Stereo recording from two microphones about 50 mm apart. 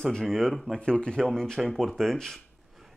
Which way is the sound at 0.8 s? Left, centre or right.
Centre.